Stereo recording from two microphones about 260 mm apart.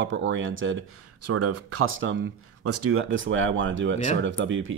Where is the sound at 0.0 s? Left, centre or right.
Right.